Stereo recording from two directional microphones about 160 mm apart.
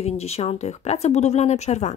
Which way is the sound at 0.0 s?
40° left (ahead or behind).